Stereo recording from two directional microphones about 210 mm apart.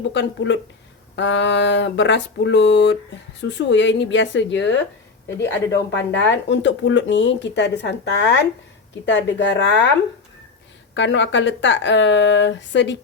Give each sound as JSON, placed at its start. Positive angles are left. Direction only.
{"t": 0.1, "sound": "speech", "side_deg": 60}
{"t": 10.9, "sound": "speech", "side_deg": 60}